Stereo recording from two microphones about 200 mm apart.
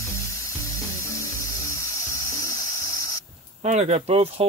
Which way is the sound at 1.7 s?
15° left (ahead or behind).